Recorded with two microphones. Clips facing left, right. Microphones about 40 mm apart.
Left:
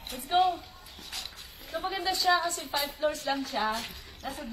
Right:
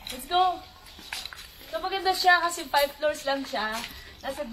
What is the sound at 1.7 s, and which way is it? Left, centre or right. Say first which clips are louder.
A woman's voice: right 4 dB; centre.